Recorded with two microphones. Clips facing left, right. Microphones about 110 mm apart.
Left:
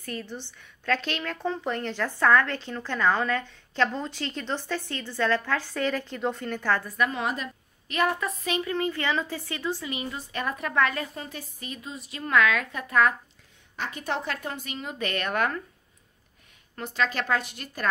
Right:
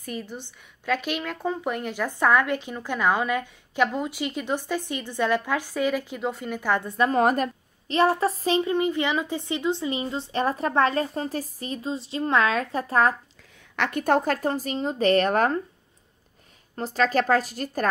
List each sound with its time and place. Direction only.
0.0 s a woman's voice: 10° right (ahead or behind)
7.1 s a woman's voice: 45° right (ahead or behind)
7.9 s a woman's voice: 30° right (ahead or behind)
13.7 s a woman's voice: 60° right (ahead or behind); by 15.6 s 35° right (ahead or behind)
16.7 s a woman's voice: 35° right (ahead or behind)